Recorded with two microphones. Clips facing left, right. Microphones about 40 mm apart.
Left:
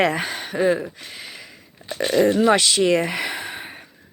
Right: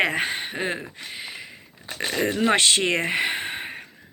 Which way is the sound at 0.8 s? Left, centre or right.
Centre.